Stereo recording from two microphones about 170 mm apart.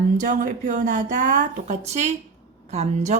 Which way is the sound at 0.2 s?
50° right (ahead or behind).